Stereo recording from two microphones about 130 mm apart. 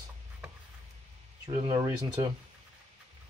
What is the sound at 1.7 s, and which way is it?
Speech, 30° right (ahead or behind).